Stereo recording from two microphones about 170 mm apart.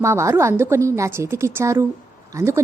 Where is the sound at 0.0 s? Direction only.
15° right (ahead or behind).